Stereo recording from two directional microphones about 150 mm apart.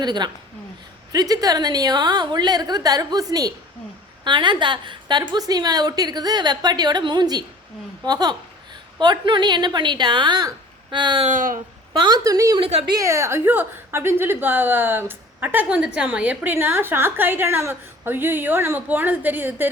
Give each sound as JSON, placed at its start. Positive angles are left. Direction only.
{"t": 0.0, "sound": "a woman's voice", "side_deg": -30}
{"t": 11.3, "sound": "speech", "side_deg": -65}
{"t": 11.9, "sound": "a woman's voice", "side_deg": -30}
{"t": 12.5, "sound": "a woman's voice", "side_deg": -35}
{"t": 13.0, "sound": "a woman's voice", "side_deg": -20}